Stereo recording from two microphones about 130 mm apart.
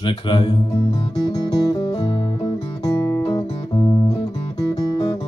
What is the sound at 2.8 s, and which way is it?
Music, 25° left (ahead or behind).